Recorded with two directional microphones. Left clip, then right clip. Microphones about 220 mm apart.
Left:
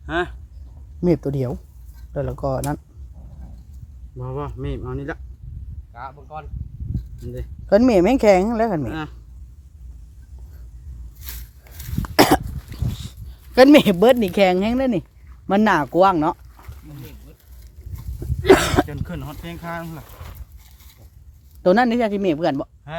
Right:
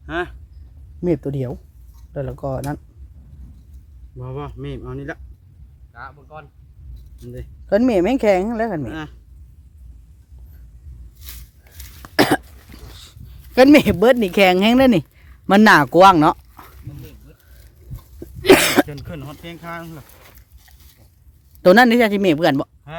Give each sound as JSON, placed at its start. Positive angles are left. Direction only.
{"t": 0.0, "sound": "speech", "side_deg": 0}
{"t": 4.2, "sound": "speech", "side_deg": -5}
{"t": 11.2, "sound": "a sound", "side_deg": 0}
{"t": 12.0, "sound": "cough", "side_deg": -5}
{"t": 15.4, "sound": "speech", "side_deg": -45}
{"t": 18.4, "sound": "a sound", "side_deg": -40}
{"t": 19.0, "sound": "speech", "side_deg": -5}
{"t": 21.6, "sound": "speech", "side_deg": -40}